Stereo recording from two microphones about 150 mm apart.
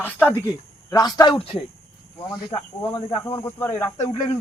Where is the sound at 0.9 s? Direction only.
25° left (ahead or behind).